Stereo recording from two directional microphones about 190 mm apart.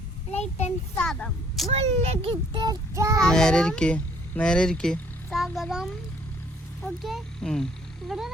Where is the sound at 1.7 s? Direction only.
35° right (ahead or behind); by 3.2 s 15° right (ahead or behind).